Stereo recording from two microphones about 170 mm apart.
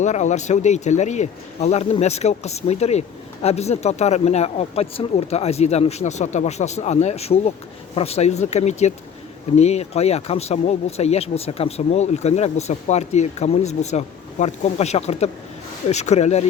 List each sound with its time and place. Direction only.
0.0 s speech: 45° left (ahead or behind)